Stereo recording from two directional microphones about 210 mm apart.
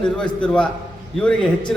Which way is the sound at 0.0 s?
5° left (ahead or behind).